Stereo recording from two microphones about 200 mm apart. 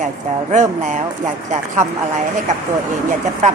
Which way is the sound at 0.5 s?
40° right (ahead or behind).